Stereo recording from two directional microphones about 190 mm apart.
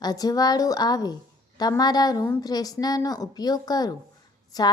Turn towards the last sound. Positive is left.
turn(degrees=20)  # may be behind; listen again after turning